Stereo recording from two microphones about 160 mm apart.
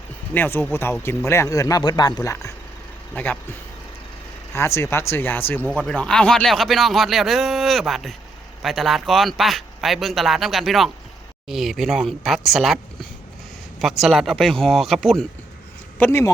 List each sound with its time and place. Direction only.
0.3 s speech: 10° left (ahead or behind)
4.5 s a man's voice: 15° left (ahead or behind)
16.0 s speech: 15° left (ahead or behind)